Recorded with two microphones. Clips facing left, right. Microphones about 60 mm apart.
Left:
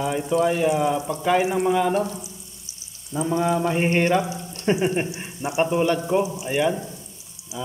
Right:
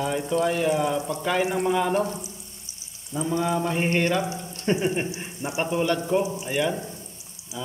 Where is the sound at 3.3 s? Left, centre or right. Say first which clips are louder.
Left 3 dB; centre.